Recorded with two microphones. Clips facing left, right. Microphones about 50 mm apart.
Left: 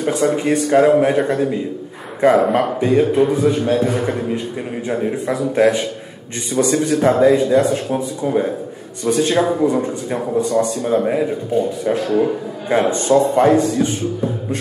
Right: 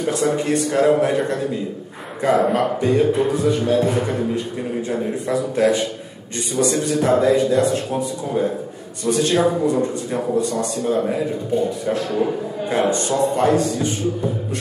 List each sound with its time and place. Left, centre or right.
0.0 s a man's voice: left
12.6 s a man's voice: left